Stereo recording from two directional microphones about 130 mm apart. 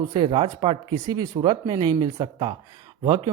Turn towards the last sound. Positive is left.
turn(degrees=-35)  # may be behind; listen again after turning